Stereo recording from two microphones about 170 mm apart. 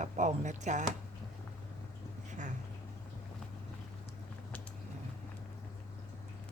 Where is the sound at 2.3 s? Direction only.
45° right (ahead or behind).